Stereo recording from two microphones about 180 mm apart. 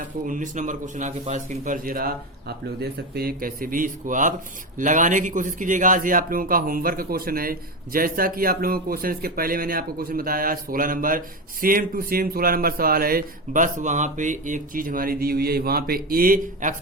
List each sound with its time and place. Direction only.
0.0 s speech: 45° right (ahead or behind)